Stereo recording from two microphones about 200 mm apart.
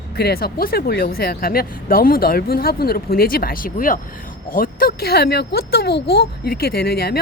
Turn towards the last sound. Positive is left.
turn(degrees=50)  # may be behind; listen again after turning